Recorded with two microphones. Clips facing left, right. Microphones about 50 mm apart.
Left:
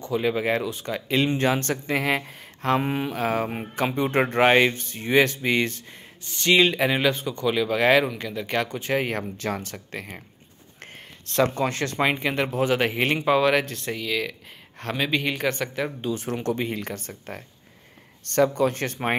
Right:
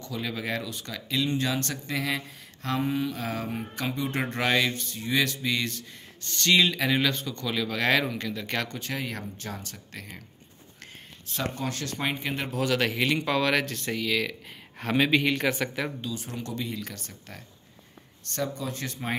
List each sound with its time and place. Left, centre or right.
0.0 s speech: left
6.2 s speech: centre
8.9 s speech: left
11.3 s speech: left
11.7 s speech: left
12.0 s speech: left
12.4 s speech: left
13.2 s speech: centre
16.0 s speech: left
18.3 s speech: left